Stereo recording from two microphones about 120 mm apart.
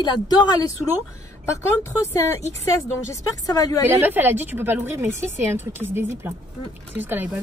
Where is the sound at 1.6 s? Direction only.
20° left (ahead or behind).